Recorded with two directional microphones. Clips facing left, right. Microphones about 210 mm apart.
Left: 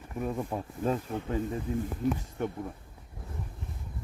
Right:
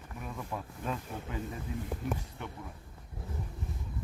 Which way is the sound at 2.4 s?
45° left (ahead or behind).